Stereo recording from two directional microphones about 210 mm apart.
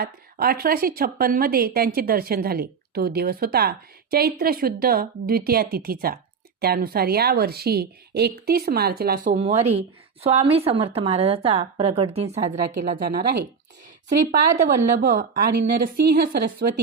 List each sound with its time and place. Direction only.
0.0 s a woman's voice: 45° right (ahead or behind); by 12.5 s 30° right (ahead or behind)
13.1 s a woman's voice: 45° right (ahead or behind)
14.3 s a woman's voice: 35° right (ahead or behind)
15.5 s a woman's voice: 45° right (ahead or behind)